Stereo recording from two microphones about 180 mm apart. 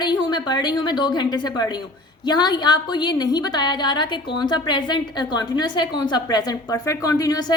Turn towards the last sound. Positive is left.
turn(degrees=20)  # may be behind; listen again after turning